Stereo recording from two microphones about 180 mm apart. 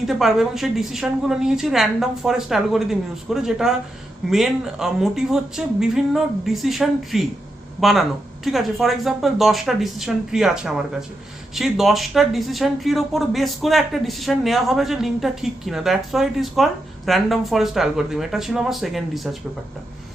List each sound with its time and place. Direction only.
0.1 s speech: centre (ahead or behind)